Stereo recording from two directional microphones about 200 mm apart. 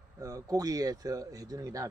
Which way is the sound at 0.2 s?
15° right (ahead or behind).